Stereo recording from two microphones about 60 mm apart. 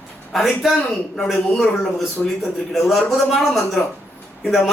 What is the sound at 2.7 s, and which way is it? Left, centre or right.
A man's voice, centre.